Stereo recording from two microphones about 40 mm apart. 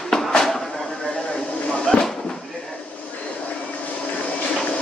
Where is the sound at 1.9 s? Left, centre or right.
Centre.